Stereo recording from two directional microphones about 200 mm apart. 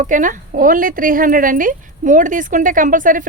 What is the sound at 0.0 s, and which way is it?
Speech, 40° right (ahead or behind).